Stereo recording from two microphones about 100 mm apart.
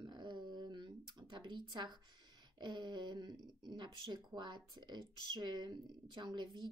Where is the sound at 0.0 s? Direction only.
45° right (ahead or behind).